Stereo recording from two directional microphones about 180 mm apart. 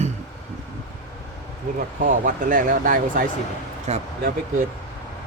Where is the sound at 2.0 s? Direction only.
45° right (ahead or behind).